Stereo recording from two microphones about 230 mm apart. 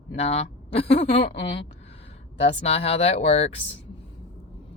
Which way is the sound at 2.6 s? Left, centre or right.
Left.